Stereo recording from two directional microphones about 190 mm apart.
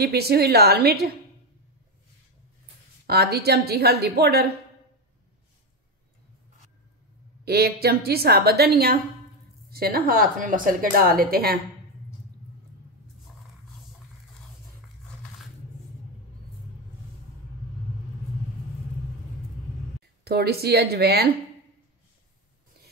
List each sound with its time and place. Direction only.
0.0 s a woman's voice: 55° right (ahead or behind)
3.1 s a woman's voice: 55° right (ahead or behind)
7.4 s a woman's voice: 55° right (ahead or behind)
20.2 s a woman's voice: 55° right (ahead or behind)